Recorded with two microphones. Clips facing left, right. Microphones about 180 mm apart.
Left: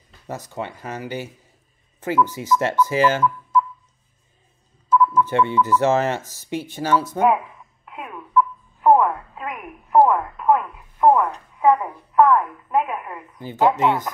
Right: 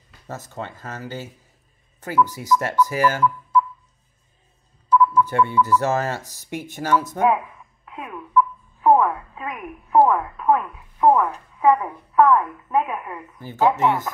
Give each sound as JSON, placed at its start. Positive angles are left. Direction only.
{"t": 0.3, "sound": "speech", "side_deg": 15}
{"t": 5.1, "sound": "speech", "side_deg": 20}
{"t": 6.2, "sound": "speech", "side_deg": -15}
{"t": 6.7, "sound": "speech", "side_deg": 20}
{"t": 8.8, "sound": "telephone", "side_deg": 5}
{"t": 12.2, "sound": "a woman's voice", "side_deg": 0}
{"t": 13.4, "sound": "speech", "side_deg": 15}